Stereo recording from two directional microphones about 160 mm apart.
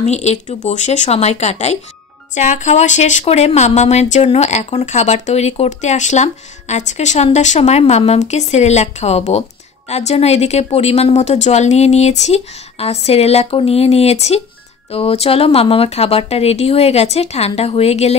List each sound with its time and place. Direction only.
0.0 s a woman's voice: 45° left (ahead or behind)